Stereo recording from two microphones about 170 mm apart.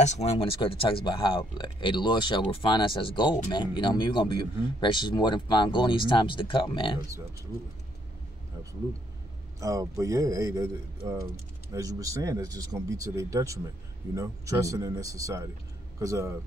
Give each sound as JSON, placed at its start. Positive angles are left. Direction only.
{"t": 0.0, "sound": "speech", "side_deg": 40}
{"t": 9.6, "sound": "speech", "side_deg": -20}